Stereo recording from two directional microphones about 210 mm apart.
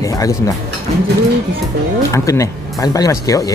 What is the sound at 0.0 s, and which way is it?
Speech, 15° left (ahead or behind).